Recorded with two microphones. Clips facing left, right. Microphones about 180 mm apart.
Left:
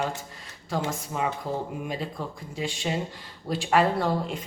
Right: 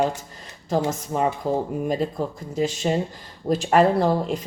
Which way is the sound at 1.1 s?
35° right (ahead or behind).